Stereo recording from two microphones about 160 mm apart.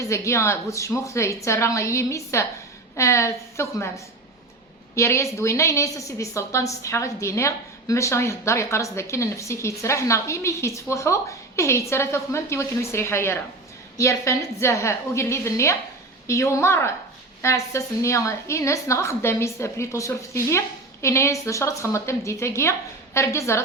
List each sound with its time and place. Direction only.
0.0 s a woman's voice: 20° left (ahead or behind)